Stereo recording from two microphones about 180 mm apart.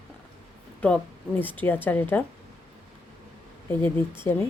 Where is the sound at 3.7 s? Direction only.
10° left (ahead or behind).